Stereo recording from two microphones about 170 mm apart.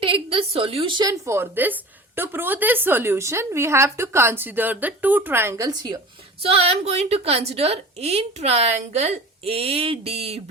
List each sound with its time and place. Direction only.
0.0 s a woman's voice: 30° right (ahead or behind)
6.4 s a woman's voice: 35° right (ahead or behind)